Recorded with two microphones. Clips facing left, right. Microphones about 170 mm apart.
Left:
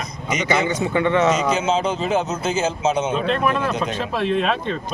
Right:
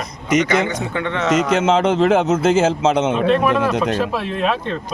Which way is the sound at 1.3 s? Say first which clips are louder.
Right 4 dB; 90° right.